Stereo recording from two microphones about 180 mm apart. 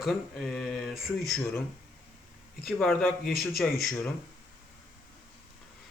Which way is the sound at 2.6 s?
5° left (ahead or behind).